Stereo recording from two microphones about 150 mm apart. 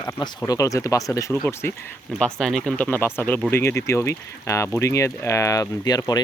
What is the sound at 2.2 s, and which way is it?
Speech, 5° left (ahead or behind).